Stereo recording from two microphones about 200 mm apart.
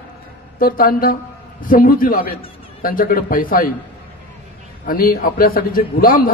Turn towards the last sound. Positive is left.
turn(degrees=45)  # may be behind; listen again after turning